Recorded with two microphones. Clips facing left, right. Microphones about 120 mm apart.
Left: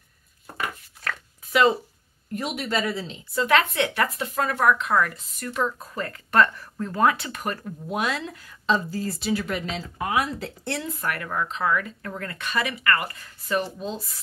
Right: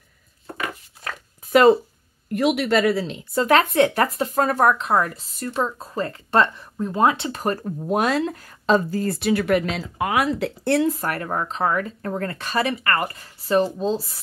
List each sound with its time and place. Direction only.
1.5 s speech: 45° right (ahead or behind)
2.3 s speech: 80° right; by 10.9 s 60° right (ahead or behind)
10.9 s speech: 35° right (ahead or behind)